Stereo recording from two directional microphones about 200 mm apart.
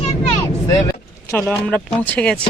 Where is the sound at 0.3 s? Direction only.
20° left (ahead or behind).